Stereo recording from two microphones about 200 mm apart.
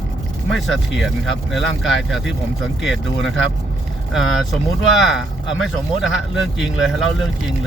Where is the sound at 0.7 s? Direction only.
Centre (ahead or behind).